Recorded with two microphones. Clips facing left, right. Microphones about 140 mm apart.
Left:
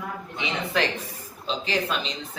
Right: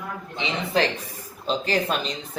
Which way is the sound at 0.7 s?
35° right (ahead or behind).